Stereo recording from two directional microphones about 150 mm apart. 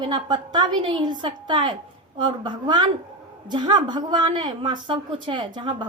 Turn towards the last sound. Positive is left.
turn(degrees=-35)  # may be behind; listen again after turning